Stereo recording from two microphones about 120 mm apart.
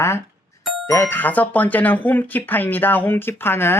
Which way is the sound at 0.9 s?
20° left (ahead or behind).